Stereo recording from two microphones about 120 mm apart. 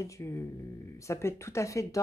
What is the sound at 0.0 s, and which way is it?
Speech, 25° left (ahead or behind).